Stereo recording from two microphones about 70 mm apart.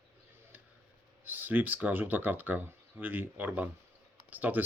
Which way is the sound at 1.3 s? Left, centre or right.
Right.